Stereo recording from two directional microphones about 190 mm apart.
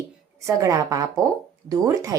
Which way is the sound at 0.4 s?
15° right (ahead or behind).